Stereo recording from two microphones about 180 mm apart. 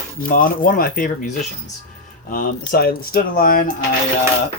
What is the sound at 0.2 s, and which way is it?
Speech, 50° left (ahead or behind).